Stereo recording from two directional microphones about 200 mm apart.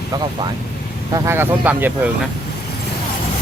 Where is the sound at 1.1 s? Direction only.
10° right (ahead or behind).